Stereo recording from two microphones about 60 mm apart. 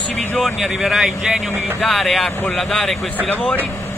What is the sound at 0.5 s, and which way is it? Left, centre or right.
Speech, centre.